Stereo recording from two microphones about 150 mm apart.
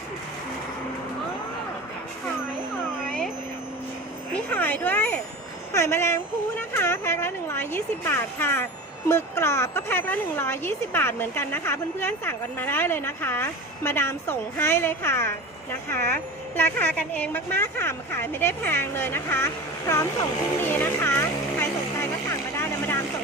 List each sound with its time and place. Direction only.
4.5 s a sound: 10° left (ahead or behind)
5.7 s a woman's voice: 15° left (ahead or behind)
22.5 s vehicle: 20° left (ahead or behind)